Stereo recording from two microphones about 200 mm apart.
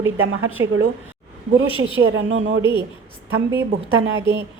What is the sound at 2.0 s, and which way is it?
Speech, 70° right (ahead or behind).